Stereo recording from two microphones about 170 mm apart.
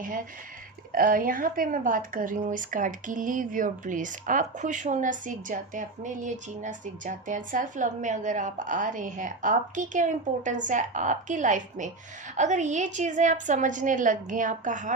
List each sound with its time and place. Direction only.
0.9 s a woman's voice: 55° right (ahead or behind)